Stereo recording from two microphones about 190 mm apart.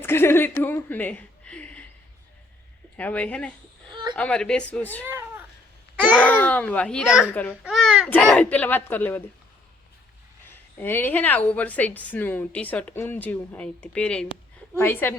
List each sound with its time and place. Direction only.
0.0 s speech: 10° left (ahead or behind)
3.0 s a woman's voice: 10° left (ahead or behind)
3.8 s a sound: 25° right (ahead or behind)
4.1 s a woman's voice: 5° left (ahead or behind)
6.1 s a child's voice: 10° left (ahead or behind)
7.6 s a sound: centre (ahead or behind)
8.1 s a woman's voice: 5° left (ahead or behind)
10.8 s a woman's voice: 10° left (ahead or behind)